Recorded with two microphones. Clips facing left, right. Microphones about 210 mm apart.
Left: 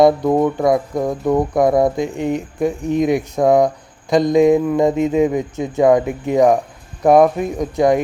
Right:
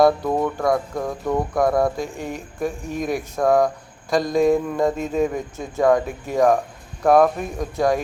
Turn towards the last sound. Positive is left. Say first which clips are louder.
# left 5 dB
turn(degrees=20)  # may be behind; listen again after turning